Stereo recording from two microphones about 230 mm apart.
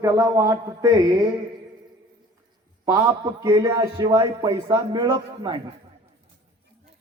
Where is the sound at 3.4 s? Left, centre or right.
Centre.